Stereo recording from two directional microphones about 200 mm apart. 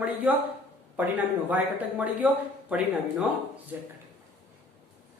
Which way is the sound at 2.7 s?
5° right (ahead or behind).